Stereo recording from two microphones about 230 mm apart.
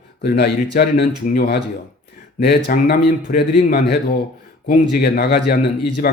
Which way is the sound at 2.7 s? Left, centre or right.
Left.